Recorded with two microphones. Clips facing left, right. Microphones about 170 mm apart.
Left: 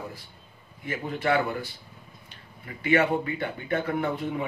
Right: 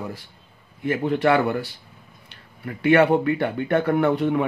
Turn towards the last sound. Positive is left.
turn(degrees=-75)  # may be behind; listen again after turning